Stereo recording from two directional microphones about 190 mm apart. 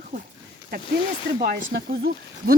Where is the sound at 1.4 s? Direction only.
55° right (ahead or behind).